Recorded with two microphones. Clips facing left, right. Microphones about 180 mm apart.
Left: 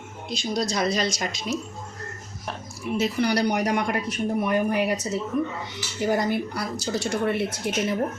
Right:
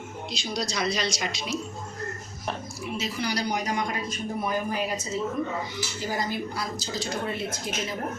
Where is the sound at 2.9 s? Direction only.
60° left (ahead or behind).